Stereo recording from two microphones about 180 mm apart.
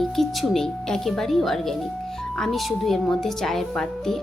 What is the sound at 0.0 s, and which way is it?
Speech, centre (ahead or behind).